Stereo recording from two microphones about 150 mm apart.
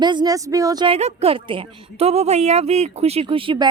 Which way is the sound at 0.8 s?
40° right (ahead or behind).